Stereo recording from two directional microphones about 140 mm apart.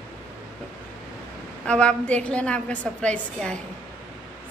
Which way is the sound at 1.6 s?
10° left (ahead or behind).